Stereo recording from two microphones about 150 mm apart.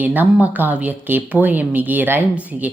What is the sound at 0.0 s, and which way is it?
Speech, 10° right (ahead or behind).